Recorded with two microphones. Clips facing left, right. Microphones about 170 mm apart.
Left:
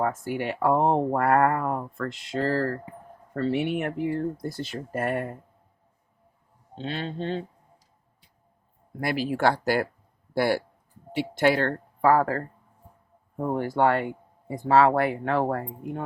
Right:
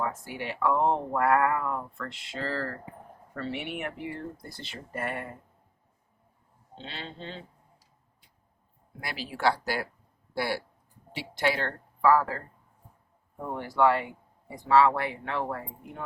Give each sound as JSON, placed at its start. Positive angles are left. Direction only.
{"t": 0.0, "sound": "speech", "side_deg": 50}
{"t": 6.7, "sound": "speech", "side_deg": 50}
{"t": 9.0, "sound": "speech", "side_deg": 50}